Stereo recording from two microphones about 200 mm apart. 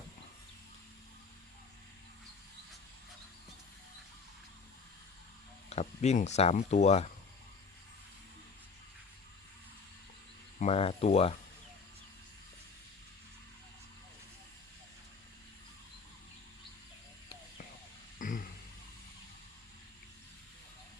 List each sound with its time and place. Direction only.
5.6 s speech: 35° left (ahead or behind)
10.6 s speech: 30° left (ahead or behind)
18.2 s a sound: 40° left (ahead or behind)